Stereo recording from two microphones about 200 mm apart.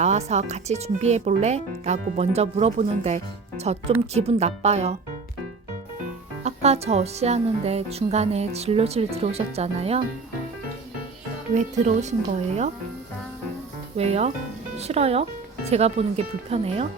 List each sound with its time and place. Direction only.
0.0 s speech: 35° right (ahead or behind)
6.4 s speech: 35° right (ahead or behind)
11.5 s speech: 35° right (ahead or behind)
13.9 s speech: 30° right (ahead or behind)